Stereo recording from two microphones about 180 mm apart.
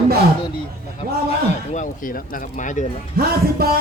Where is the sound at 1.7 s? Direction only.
45° left (ahead or behind).